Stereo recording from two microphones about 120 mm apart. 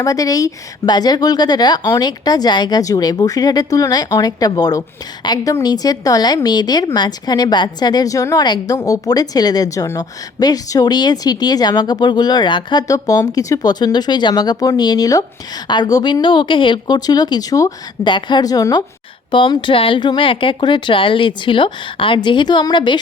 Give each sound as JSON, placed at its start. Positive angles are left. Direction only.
{"t": 0.0, "sound": "a woman's voice", "side_deg": 30}
{"t": 19.3, "sound": "speech", "side_deg": 40}